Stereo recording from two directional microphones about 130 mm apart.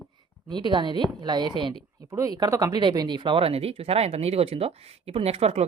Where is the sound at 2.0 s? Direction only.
25° right (ahead or behind).